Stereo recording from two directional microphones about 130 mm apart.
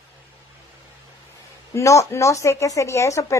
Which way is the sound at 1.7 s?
20° left (ahead or behind).